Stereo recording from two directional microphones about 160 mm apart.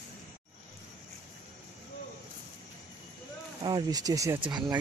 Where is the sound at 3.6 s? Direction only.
25° right (ahead or behind).